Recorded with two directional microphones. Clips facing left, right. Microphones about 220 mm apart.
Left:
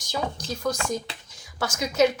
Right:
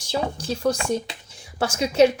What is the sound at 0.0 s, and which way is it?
A woman's voice, 30° right (ahead or behind).